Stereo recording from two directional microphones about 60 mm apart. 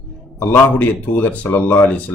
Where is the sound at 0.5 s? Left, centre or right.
Left.